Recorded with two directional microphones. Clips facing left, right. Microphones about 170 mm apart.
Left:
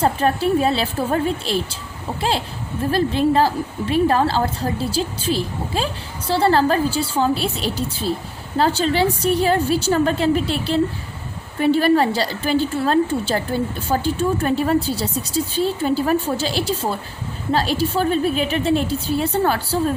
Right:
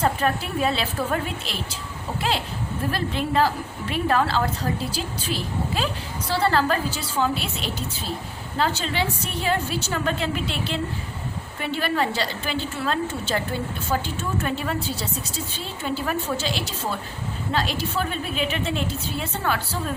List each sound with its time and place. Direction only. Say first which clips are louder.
0.0 s a woman's voice: left 5 dB; 30° left (ahead or behind)